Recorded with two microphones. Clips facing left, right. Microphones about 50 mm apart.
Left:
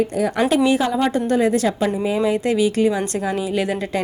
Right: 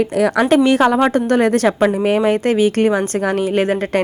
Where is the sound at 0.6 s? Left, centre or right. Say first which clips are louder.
Right 5 dB; right.